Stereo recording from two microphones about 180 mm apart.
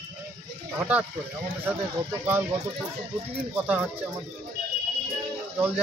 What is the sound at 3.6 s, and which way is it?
Speech, 5° right (ahead or behind).